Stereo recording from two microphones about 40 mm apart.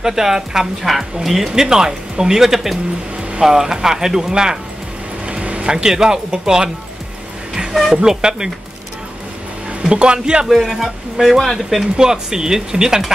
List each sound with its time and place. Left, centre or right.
0.0 s speech: centre
5.2 s speech: right
7.9 s speech: centre
9.8 s speech: right
10.4 s speech: centre
12.0 s speech: centre